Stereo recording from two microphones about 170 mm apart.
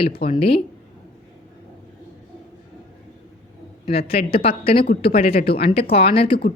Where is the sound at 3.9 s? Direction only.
35° left (ahead or behind).